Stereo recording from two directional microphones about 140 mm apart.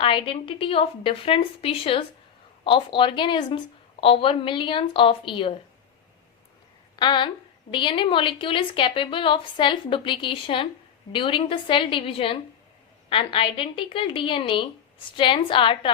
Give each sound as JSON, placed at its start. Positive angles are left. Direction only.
{"t": 0.0, "sound": "a woman's voice", "side_deg": 35}
{"t": 6.9, "sound": "a woman's voice", "side_deg": 30}